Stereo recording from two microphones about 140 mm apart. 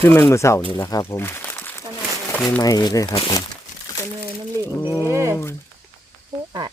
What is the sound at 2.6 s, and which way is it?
Speech, 30° left (ahead or behind).